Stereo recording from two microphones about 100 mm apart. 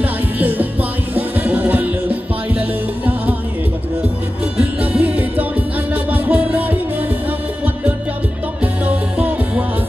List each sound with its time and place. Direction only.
0.0 s music: 15° right (ahead or behind)
4.9 s music: 15° right (ahead or behind)
8.8 s music: 15° right (ahead or behind)